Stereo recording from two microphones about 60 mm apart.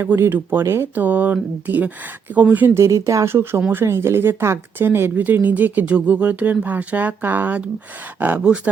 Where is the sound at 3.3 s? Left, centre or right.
Right.